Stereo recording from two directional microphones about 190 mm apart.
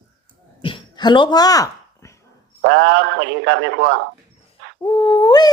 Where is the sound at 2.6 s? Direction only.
70° right (ahead or behind).